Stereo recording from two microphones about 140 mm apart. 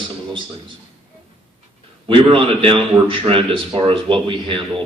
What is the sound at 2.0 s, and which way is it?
A man's voice, 40° right (ahead or behind).